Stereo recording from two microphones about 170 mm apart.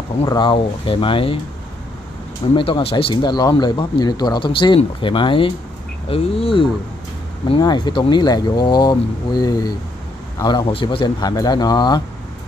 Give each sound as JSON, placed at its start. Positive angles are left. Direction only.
{"t": 0.2, "sound": "speech", "side_deg": 25}
{"t": 2.5, "sound": "speech", "side_deg": 30}